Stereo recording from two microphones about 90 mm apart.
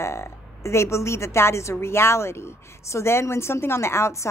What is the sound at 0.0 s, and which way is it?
A woman's voice, 30° left (ahead or behind).